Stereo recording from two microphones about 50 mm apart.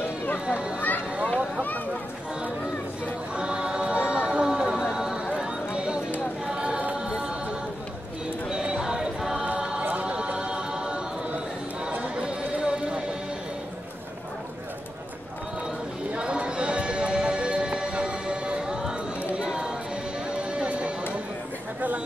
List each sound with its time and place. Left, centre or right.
0.0 s a sound: left
0.5 s a sound: centre
0.7 s a sound: left
3.3 s music: centre
4.9 s clip-clop: centre
6.4 s choir: centre
7.1 s music: centre
8.5 s music: centre
9.6 s choir: centre
10.0 s music: centre
12.2 s run: right
16.1 s music: right